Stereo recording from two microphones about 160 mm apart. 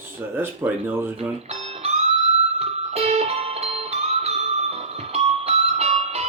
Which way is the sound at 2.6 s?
40° right (ahead or behind).